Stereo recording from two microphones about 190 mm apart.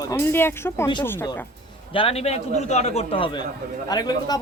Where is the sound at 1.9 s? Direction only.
30° left (ahead or behind).